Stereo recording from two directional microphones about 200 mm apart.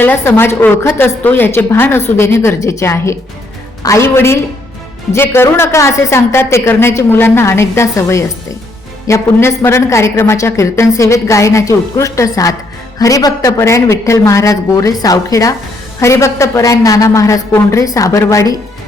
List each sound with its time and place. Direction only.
0.0 s a woman's voice: 10° left (ahead or behind)